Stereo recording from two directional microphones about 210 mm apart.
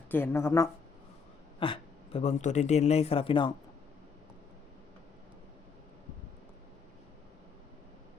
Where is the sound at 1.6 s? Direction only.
25° left (ahead or behind).